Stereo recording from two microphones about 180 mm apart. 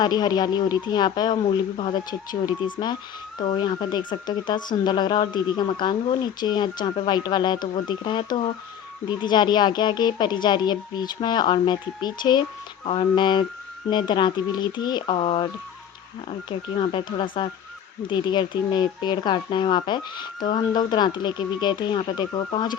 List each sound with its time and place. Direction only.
0.0 s speech: 25° left (ahead or behind)
16.5 s speech: 25° left (ahead or behind)